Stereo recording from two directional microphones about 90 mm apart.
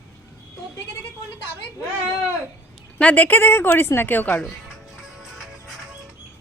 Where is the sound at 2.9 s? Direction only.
20° left (ahead or behind).